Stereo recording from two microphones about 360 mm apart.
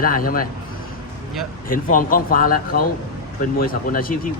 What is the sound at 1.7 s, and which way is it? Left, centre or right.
Speech, left.